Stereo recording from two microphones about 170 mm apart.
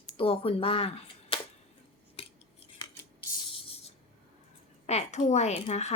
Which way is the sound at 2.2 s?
35° left (ahead or behind).